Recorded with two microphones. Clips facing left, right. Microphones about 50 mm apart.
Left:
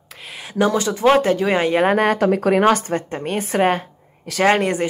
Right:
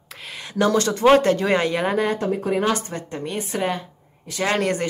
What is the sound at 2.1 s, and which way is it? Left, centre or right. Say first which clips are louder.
Speech: left 6 dB; left.